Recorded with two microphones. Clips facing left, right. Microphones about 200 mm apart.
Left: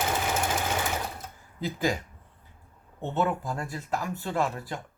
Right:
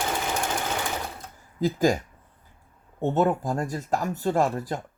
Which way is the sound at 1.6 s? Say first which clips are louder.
Right 6 dB; 45° right (ahead or behind).